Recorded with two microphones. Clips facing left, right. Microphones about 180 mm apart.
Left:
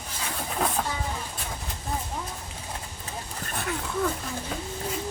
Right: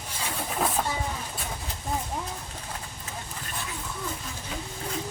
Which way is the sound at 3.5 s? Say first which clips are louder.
Left 7 dB; 65° left (ahead or behind).